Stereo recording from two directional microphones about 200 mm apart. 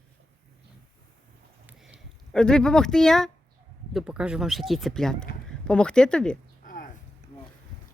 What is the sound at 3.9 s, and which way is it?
Speech, 5° right (ahead or behind).